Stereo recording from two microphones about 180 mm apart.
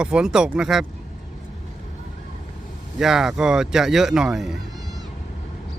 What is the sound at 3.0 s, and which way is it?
Speech, 5° right (ahead or behind).